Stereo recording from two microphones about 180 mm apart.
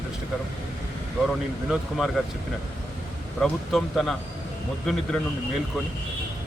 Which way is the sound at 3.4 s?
Centre (ahead or behind).